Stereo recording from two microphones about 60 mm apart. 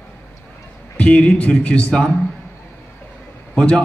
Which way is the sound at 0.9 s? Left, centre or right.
Left.